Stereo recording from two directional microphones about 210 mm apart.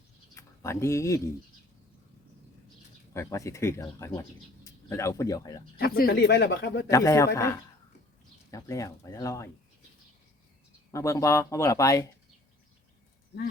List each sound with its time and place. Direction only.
0.3 s speech: 15° left (ahead or behind)
3.1 s speech: 15° left (ahead or behind)
5.8 s speech: 45° left (ahead or behind)
6.9 s speech: 15° left (ahead or behind)
8.4 s speech: 15° left (ahead or behind)
10.9 s speech: 15° left (ahead or behind)